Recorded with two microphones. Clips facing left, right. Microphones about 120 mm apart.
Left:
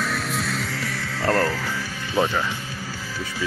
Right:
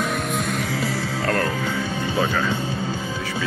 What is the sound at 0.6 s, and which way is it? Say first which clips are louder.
Music: right 5 dB; 20° right (ahead or behind).